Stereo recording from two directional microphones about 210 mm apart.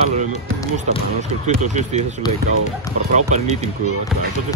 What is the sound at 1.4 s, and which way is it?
Speech, 35° right (ahead or behind).